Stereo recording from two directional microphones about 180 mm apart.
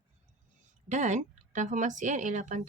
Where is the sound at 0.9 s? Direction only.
40° right (ahead or behind).